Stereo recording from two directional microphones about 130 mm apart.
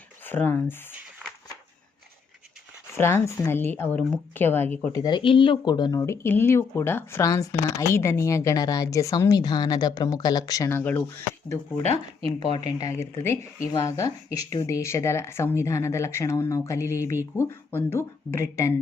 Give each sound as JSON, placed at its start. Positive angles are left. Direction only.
{"t": 0.3, "sound": "a woman's voice", "side_deg": 15}
{"t": 2.9, "sound": "a woman's voice", "side_deg": 20}
{"t": 4.9, "sound": "speech", "side_deg": 35}
{"t": 6.0, "sound": "speech", "side_deg": 20}
{"t": 12.5, "sound": "speech", "side_deg": 35}
{"t": 12.9, "sound": "speech", "side_deg": 20}